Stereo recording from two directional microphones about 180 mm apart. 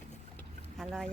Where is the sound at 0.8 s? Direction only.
Centre (ahead or behind).